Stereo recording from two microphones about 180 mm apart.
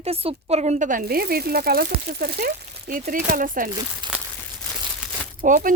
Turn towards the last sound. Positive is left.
turn(degrees=-45)  # may be behind; listen again after turning